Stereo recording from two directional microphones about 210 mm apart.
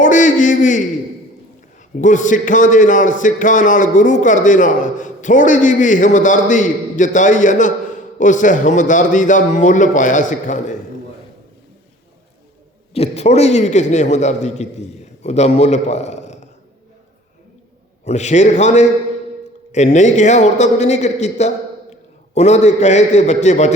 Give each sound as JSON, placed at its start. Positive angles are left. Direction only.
{"t": 0.0, "sound": "a sound", "side_deg": 35}
{"t": 2.0, "sound": "a man's voice", "side_deg": 35}
{"t": 12.9, "sound": "a man's voice", "side_deg": 30}
{"t": 18.0, "sound": "a man's voice", "side_deg": 30}